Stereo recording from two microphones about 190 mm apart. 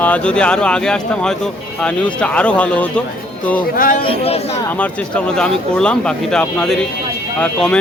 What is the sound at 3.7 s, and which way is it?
Speech, 50° left (ahead or behind).